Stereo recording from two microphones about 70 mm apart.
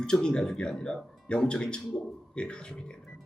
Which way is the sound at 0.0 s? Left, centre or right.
Centre.